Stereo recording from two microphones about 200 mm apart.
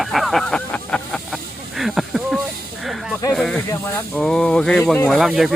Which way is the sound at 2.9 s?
Centre (ahead or behind).